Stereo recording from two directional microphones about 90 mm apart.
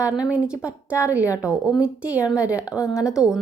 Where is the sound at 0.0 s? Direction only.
10° right (ahead or behind).